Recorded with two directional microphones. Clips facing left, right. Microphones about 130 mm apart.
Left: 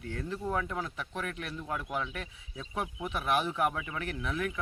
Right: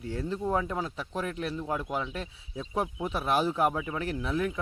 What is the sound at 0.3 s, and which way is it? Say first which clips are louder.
Speech: right 4 dB; 25° right (ahead or behind).